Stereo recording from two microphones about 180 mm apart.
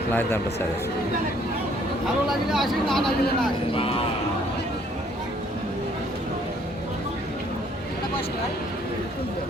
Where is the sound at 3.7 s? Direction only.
30° left (ahead or behind).